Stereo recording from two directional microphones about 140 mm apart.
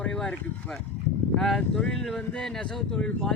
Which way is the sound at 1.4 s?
5° left (ahead or behind).